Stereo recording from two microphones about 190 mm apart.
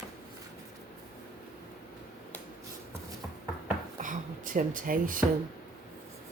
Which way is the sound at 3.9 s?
40° right (ahead or behind).